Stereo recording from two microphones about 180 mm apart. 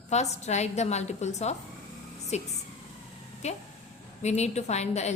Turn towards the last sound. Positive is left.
turn(degrees=40)  # may be behind; listen again after turning